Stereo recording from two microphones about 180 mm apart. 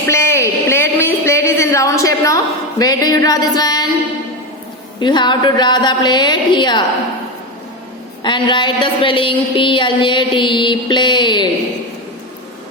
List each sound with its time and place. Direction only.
0.1 s a sound: 15° left (ahead or behind)
4.9 s a woman's voice: 25° left (ahead or behind)
8.2 s a woman's voice: 25° left (ahead or behind)